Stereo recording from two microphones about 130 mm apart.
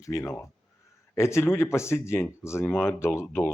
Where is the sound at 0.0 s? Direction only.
25° left (ahead or behind).